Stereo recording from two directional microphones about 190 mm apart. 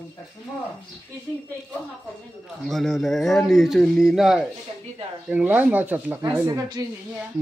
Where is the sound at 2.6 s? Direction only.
Centre (ahead or behind).